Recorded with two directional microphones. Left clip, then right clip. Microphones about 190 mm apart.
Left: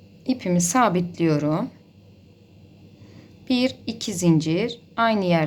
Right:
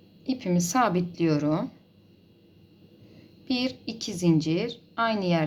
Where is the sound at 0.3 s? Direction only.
10° left (ahead or behind).